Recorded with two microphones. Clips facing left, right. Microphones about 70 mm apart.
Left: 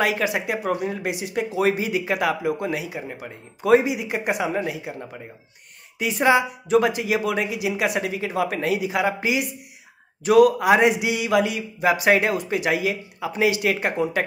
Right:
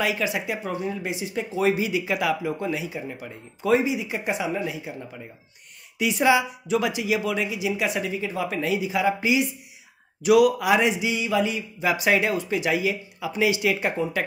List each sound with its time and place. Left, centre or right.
0.0 s speech: left
3.0 s a man's voice: left
5.9 s a man's voice: left
10.2 s a man's voice: left